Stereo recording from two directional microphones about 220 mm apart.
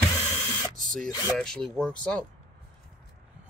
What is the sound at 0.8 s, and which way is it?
Speech, 5° left (ahead or behind).